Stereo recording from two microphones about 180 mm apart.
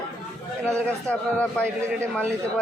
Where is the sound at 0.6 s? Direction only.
5° left (ahead or behind).